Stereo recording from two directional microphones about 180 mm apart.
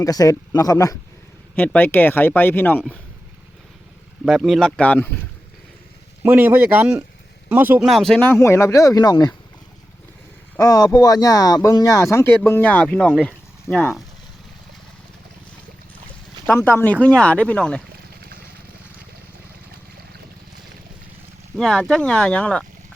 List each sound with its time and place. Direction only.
0.0 s speech: 20° left (ahead or behind)
1.5 s speech: 10° left (ahead or behind)
4.3 s speech: centre (ahead or behind)
6.2 s speech: 10° right (ahead or behind)
7.9 s speech: centre (ahead or behind); by 9.3 s 20° left (ahead or behind)
10.6 s speech: 20° left (ahead or behind); by 14.0 s centre (ahead or behind)
16.5 s speech: 15° left (ahead or behind)
21.6 s speech: 5° left (ahead or behind)